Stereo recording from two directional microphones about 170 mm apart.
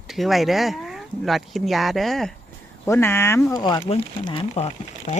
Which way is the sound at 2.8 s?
15° left (ahead or behind).